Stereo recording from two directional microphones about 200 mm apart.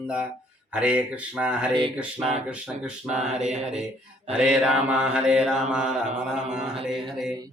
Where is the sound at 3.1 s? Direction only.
35° right (ahead or behind).